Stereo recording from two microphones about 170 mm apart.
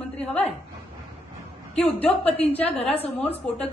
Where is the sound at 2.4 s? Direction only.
35° left (ahead or behind).